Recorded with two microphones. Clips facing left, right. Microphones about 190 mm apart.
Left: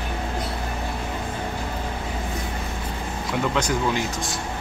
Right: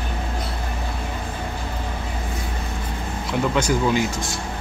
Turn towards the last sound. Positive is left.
turn(degrees=-5)  # may be behind; listen again after turning